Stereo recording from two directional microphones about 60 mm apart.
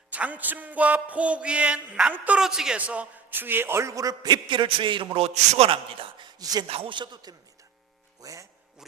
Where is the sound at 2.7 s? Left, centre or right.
Right.